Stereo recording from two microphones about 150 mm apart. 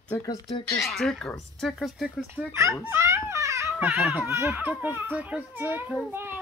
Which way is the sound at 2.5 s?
20° right (ahead or behind).